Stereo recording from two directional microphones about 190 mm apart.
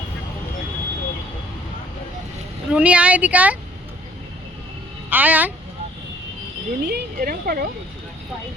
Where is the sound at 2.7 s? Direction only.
5° right (ahead or behind).